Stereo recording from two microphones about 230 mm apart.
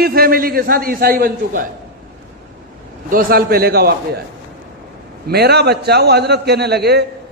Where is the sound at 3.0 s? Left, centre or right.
Right.